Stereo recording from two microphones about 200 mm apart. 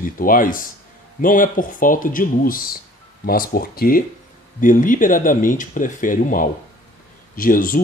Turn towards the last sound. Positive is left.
turn(degrees=45)  # may be behind; listen again after turning